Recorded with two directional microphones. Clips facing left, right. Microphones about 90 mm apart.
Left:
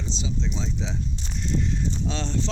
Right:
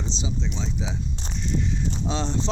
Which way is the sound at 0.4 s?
Centre (ahead or behind).